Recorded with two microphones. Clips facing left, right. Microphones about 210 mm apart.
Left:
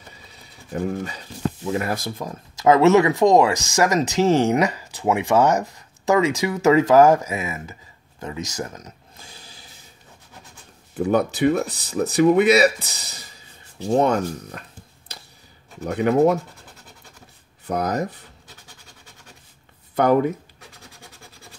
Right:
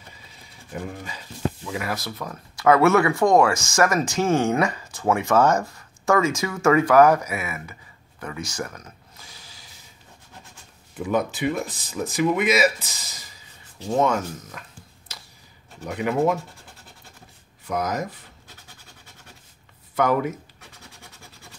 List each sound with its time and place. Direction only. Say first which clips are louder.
1.7 s speech: left 5 dB; 45° left (ahead or behind)
2.0 s speech: left 3 dB; 25° left (ahead or behind)
11.0 s speech: left 5 dB; 35° left (ahead or behind)
12.7 s speech: left 2 dB; 65° left (ahead or behind)
13.9 s speech: left 3 dB; 35° left (ahead or behind)
15.8 s speech: left 5 dB; 40° left (ahead or behind)
17.6 s speech: left 3 dB; 35° left (ahead or behind)
20.0 s speech: left 4 dB; 35° left (ahead or behind)